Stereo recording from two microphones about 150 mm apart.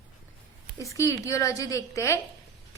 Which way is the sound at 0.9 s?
20° left (ahead or behind).